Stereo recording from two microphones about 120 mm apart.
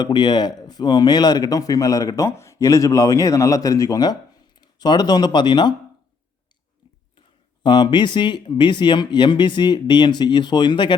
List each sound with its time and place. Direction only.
0.0 s speech: 35° left (ahead or behind)
7.6 s speech: 40° left (ahead or behind)